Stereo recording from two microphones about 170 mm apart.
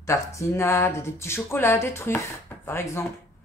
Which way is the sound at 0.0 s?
20° left (ahead or behind).